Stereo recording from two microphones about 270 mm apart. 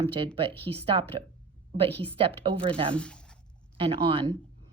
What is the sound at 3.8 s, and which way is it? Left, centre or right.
Speech, centre.